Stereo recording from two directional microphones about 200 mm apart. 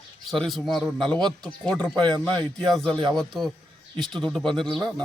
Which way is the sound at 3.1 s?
Centre (ahead or behind).